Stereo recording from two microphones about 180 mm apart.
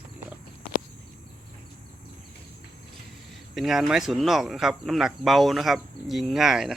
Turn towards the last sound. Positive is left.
turn(degrees=0)  # may be behind; listen again after turning